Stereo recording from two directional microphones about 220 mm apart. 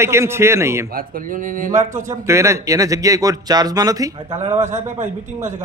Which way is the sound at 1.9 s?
15° right (ahead or behind).